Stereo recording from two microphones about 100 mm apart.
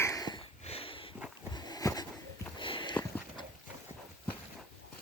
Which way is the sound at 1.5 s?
45° left (ahead or behind).